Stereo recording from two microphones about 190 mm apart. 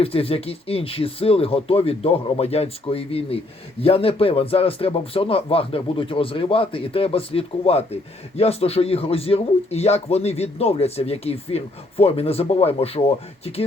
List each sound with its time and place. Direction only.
0.0 s a man's voice: 30° left (ahead or behind)